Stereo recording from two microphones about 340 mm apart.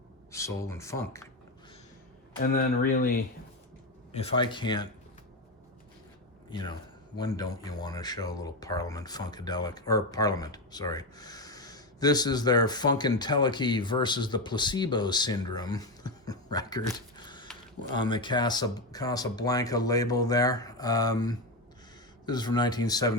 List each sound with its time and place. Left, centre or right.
0.3 s speech: centre
2.4 s speech: left
7.2 s speech: centre
17.2 s a sound: centre
17.9 s speech: centre